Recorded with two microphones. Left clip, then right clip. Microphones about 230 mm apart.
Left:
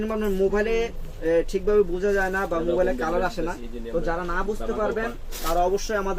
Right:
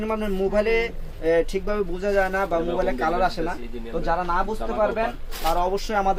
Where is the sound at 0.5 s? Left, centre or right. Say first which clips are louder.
Right 2 dB; right.